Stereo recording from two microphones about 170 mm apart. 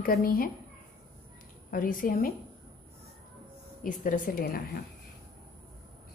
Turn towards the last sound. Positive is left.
turn(degrees=60)  # may be behind; listen again after turning